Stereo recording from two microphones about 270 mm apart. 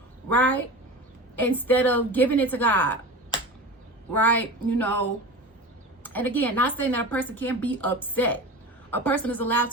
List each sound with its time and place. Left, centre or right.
0.3 s a woman's voice: centre
4.1 s a woman's voice: centre